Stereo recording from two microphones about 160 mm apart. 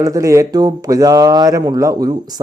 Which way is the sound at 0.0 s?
20° right (ahead or behind).